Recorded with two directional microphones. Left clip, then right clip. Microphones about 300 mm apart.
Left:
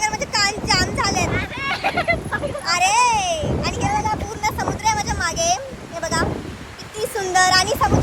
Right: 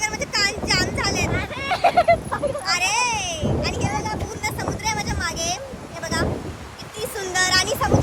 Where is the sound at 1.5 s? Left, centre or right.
Right.